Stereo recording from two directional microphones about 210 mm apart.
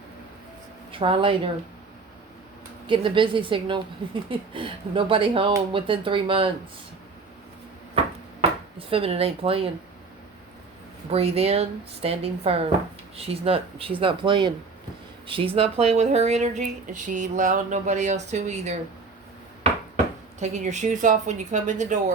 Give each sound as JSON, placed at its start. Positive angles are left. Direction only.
{"t": 0.9, "sound": "speech", "side_deg": -25}
{"t": 2.8, "sound": "a woman's voice", "side_deg": -25}
{"t": 8.9, "sound": "a woman's voice", "side_deg": -25}
{"t": 11.1, "sound": "a woman's voice", "side_deg": -30}
{"t": 20.4, "sound": "speech", "side_deg": -35}